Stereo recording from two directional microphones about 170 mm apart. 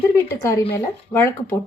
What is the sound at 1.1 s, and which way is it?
Speech, 15° left (ahead or behind).